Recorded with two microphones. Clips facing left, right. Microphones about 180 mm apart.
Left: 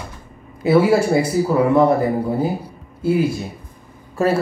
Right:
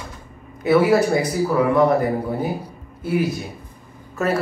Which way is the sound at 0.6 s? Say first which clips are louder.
Left 1 dB; 25° left (ahead or behind).